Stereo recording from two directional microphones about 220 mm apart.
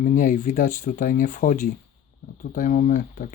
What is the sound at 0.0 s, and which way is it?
Speech, 35° left (ahead or behind).